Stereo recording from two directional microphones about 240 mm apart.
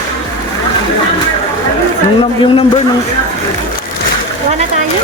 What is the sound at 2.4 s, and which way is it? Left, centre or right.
Speech, left.